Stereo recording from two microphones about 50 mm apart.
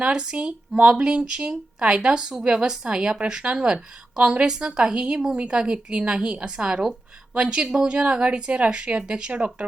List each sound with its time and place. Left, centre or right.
0.0 s speech: centre